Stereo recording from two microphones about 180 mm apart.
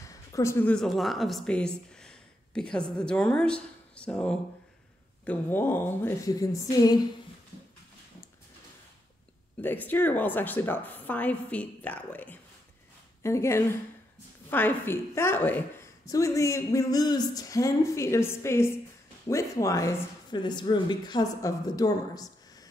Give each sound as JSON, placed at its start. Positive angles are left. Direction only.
{"t": 0.0, "sound": "a woman's voice", "side_deg": 15}
{"t": 9.6, "sound": "a woman's voice", "side_deg": 10}